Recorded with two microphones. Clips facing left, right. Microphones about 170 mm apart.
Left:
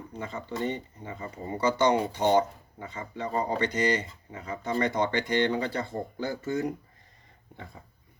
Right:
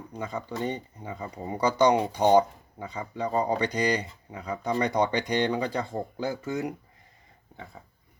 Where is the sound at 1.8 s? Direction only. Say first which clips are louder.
Right 3 dB; 15° right (ahead or behind).